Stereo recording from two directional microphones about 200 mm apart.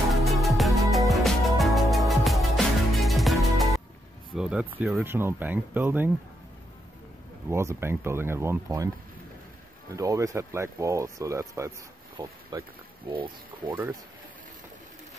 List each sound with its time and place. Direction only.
0.1 s music: centre (ahead or behind)
4.4 s a sound: 5° right (ahead or behind)
4.7 s speech: 5° right (ahead or behind)
7.4 s speech: 10° right (ahead or behind)
9.9 s speech: 15° right (ahead or behind)